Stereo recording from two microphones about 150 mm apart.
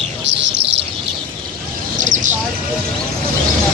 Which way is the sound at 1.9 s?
55° right (ahead or behind).